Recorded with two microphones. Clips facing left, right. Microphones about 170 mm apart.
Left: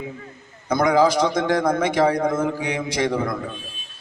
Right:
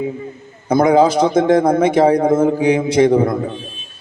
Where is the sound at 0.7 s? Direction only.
30° right (ahead or behind).